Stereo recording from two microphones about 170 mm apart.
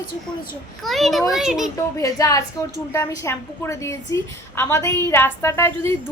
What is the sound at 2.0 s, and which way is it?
A woman's voice, 20° left (ahead or behind).